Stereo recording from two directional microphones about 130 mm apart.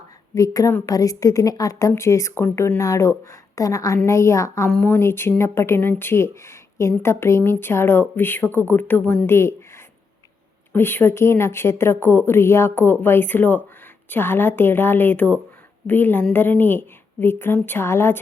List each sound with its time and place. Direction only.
0.3 s speech: 25° left (ahead or behind)
4.7 s speech: 10° left (ahead or behind)
10.7 s speech: 15° left (ahead or behind)